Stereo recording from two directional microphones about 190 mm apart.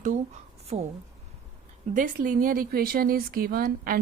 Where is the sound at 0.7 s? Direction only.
35° right (ahead or behind).